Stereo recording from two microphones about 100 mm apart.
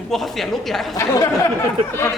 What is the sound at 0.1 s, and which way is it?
Speech, centre (ahead or behind).